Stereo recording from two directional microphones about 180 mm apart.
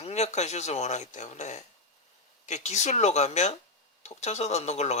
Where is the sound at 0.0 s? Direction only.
40° left (ahead or behind).